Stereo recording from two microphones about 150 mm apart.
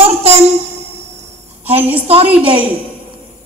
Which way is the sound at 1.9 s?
40° right (ahead or behind).